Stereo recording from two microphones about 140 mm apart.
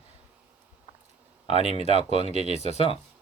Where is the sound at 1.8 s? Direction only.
45° right (ahead or behind).